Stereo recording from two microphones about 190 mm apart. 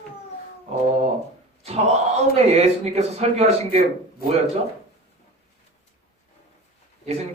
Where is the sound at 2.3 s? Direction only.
35° right (ahead or behind).